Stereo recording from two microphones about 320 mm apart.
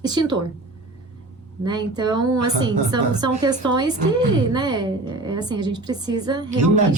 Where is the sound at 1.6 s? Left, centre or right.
Centre.